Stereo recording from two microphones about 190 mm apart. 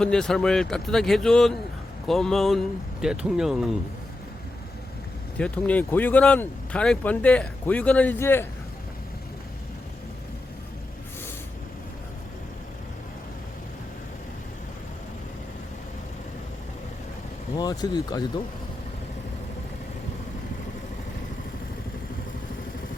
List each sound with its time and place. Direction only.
0.0 s speech: 5° left (ahead or behind)
5.4 s speech: 5° left (ahead or behind)
17.5 s speech: 20° left (ahead or behind)